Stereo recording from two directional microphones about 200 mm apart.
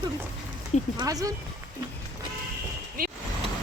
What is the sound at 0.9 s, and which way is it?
Speech, 15° right (ahead or behind).